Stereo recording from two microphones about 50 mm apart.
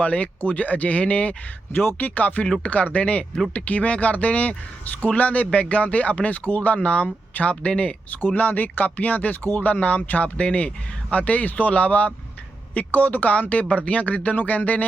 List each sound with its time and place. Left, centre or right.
0.0 s speech: left
1.7 s speech: left
8.3 s speech: left
9.6 s speech: left